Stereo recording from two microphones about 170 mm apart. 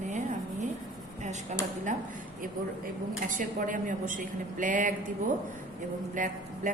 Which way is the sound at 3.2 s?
50° right (ahead or behind).